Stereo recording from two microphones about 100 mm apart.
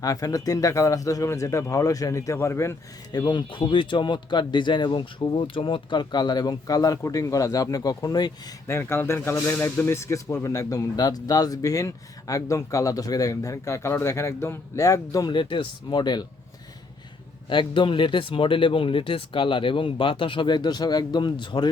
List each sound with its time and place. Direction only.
0.0 s a man's voice: 35° left (ahead or behind)
3.1 s speech: 45° left (ahead or behind)
8.6 s a man's voice: 25° left (ahead or behind)
15.3 s speech: 55° left (ahead or behind)
17.5 s speech: 55° left (ahead or behind)